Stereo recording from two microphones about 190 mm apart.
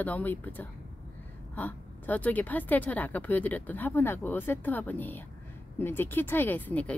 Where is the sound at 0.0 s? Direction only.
10° left (ahead or behind).